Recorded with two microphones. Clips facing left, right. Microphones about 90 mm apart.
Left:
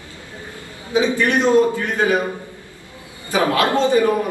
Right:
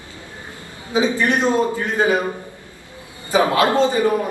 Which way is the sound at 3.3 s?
25° right (ahead or behind).